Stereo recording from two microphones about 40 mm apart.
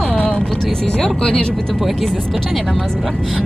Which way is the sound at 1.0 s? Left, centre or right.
Centre.